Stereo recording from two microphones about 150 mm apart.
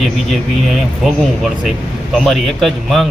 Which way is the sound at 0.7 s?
Centre (ahead or behind).